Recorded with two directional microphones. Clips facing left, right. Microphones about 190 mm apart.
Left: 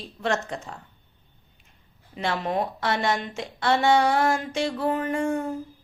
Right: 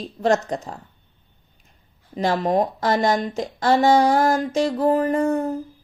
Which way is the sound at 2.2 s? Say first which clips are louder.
Right 6 dB; 40° right (ahead or behind).